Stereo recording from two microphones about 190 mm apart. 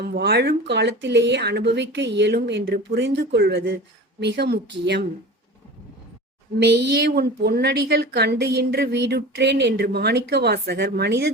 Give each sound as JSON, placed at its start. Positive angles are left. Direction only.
{"t": 0.0, "sound": "a woman's voice", "side_deg": -60}
{"t": 6.6, "sound": "a woman's voice", "side_deg": -60}